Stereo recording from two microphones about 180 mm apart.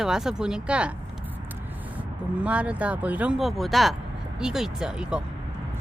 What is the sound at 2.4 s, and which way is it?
Speech, 5° right (ahead or behind).